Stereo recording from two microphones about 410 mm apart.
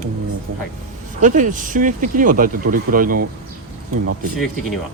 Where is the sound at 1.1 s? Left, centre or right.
Centre.